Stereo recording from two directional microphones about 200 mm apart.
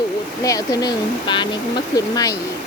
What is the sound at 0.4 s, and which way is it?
Speech, 15° left (ahead or behind).